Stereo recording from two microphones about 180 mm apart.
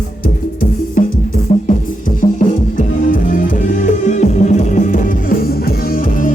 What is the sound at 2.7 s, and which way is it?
Music, 50° left (ahead or behind).